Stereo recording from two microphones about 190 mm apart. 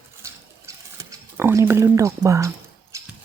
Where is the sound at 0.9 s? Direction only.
15° right (ahead or behind).